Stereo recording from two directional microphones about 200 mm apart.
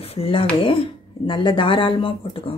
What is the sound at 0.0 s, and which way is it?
Speech, 30° left (ahead or behind).